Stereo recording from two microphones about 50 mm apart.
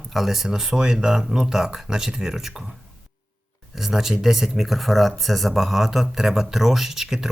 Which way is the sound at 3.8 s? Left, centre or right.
Centre.